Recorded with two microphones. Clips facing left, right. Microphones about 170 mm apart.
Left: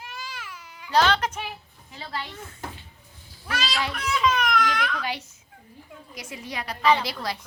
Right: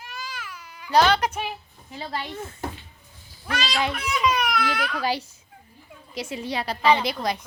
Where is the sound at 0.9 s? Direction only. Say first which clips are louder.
Right 2 dB; 10° right (ahead or behind).